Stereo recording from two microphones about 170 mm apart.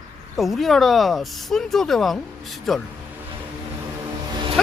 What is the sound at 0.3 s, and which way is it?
Speech, centre (ahead or behind).